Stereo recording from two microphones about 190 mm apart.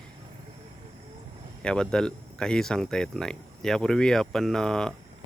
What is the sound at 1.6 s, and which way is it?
Speech, 5° left (ahead or behind).